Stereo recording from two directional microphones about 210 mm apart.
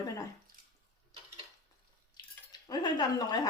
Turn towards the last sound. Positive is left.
turn(degrees=20)  # may be behind; listen again after turning